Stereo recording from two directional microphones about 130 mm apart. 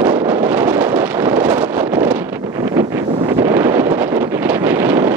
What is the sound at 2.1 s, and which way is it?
Wind noise, 20° right (ahead or behind).